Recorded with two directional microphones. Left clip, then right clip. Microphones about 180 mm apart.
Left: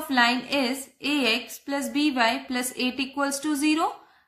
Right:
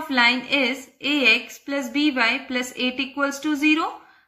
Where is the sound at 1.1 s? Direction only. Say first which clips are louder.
Right 7 dB; 35° left (ahead or behind).